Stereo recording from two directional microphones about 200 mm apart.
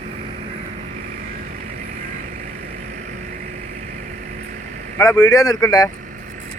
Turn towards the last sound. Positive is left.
turn(degrees=20)  # may be behind; listen again after turning